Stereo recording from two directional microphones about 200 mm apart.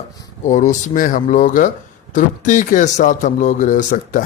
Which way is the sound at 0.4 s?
40° left (ahead or behind).